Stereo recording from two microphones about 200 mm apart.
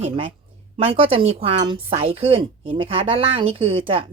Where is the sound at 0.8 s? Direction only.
30° right (ahead or behind).